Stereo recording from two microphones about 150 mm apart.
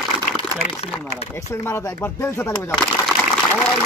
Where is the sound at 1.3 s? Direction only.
15° left (ahead or behind).